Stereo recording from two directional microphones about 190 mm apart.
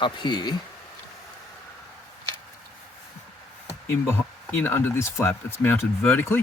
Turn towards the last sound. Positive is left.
turn(degrees=10)  # may be behind; listen again after turning